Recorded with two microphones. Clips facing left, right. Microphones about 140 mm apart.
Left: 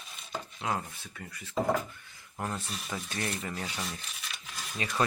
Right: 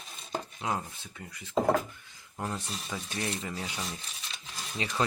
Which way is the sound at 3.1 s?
20° right (ahead or behind).